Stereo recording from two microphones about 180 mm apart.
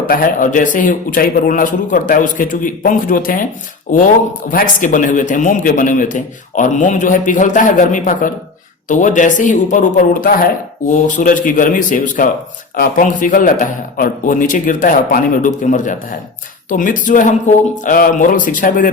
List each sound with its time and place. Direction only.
0.1 s a man's voice: 50° left (ahead or behind)